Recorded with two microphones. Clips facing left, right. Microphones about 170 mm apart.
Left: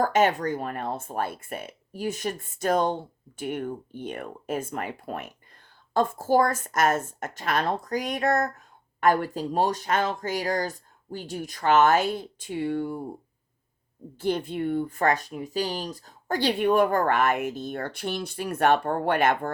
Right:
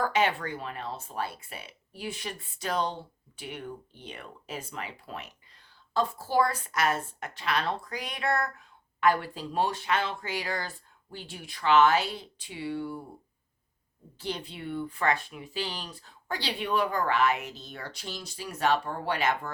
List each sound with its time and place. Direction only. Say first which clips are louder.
0.0 s a woman's voice: left 5 dB; 45° left (ahead or behind)
14.2 s a woman's voice: left 10 dB; 50° left (ahead or behind)